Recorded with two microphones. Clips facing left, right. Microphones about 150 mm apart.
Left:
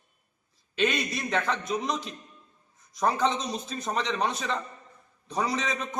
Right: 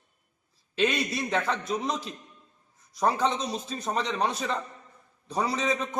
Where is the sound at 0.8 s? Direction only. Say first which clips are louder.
Right 1 dB; centre (ahead or behind).